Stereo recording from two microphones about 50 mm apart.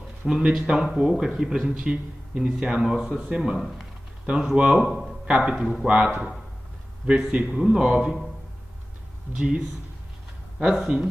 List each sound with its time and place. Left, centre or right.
0.2 s a man's voice: centre
3.5 s speech: centre
4.3 s a man's voice: right
5.6 s speech: centre
7.1 s a man's voice: right
9.3 s a man's voice: right
10.6 s speech: centre